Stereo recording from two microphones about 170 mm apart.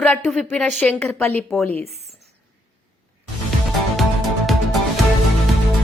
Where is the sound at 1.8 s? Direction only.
40° right (ahead or behind).